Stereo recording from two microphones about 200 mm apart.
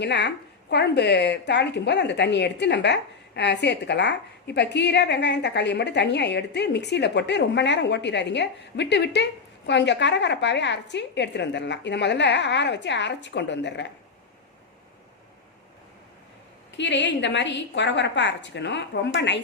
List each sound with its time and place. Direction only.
0.0 s speech: 60° left (ahead or behind)
16.7 s speech: 60° left (ahead or behind)